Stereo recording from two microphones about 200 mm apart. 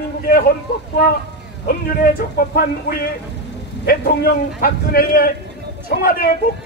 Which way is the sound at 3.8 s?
50° left (ahead or behind).